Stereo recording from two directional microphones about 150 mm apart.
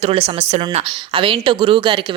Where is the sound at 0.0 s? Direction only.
40° right (ahead or behind).